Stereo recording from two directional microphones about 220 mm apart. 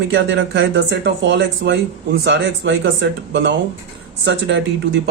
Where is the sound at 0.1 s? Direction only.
55° right (ahead or behind).